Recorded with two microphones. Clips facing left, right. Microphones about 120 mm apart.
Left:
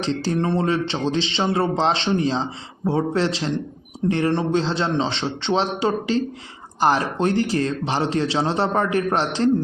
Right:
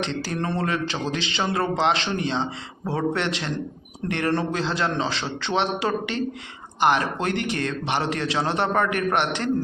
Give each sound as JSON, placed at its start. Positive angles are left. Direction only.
{"t": 0.0, "sound": "a man's voice", "side_deg": 30}